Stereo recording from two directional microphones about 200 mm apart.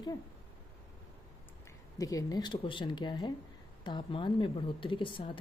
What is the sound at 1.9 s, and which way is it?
A woman's voice, 15° left (ahead or behind).